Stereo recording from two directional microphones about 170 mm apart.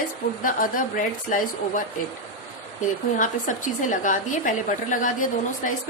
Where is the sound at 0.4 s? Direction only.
50° left (ahead or behind).